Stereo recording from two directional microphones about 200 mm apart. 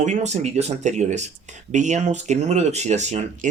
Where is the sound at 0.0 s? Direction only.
35° right (ahead or behind).